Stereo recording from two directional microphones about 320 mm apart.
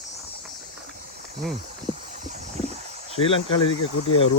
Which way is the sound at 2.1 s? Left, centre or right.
Right.